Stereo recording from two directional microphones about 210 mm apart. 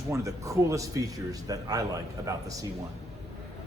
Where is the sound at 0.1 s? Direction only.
15° right (ahead or behind).